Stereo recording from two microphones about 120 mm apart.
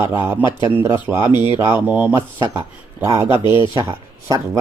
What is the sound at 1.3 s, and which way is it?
Speech, 40° left (ahead or behind).